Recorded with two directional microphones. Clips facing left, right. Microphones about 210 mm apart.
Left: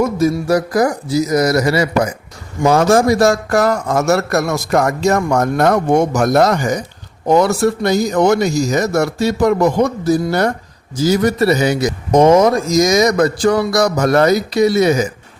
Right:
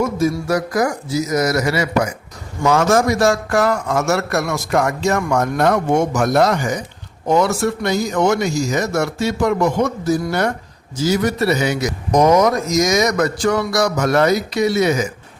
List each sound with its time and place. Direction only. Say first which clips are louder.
0.0 s a man's voice: left 3 dB; 35° left (ahead or behind)
12.1 s a man's voice: left 3 dB; 25° left (ahead or behind)